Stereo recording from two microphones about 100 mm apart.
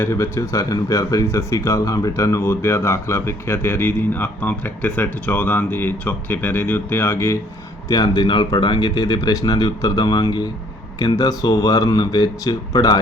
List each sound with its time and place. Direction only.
0.0 s speech: 30° left (ahead or behind)
7.9 s speech: 45° left (ahead or behind)